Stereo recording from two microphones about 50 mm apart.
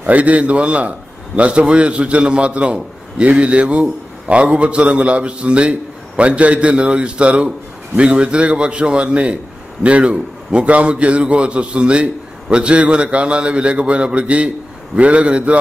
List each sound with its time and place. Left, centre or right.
0.0 s a man's voice: right